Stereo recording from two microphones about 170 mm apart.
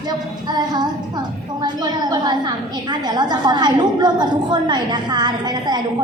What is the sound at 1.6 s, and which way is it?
A woman's voice, 25° right (ahead or behind).